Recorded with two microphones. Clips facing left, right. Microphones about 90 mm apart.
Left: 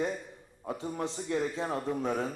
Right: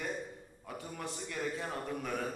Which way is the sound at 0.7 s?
25° left (ahead or behind).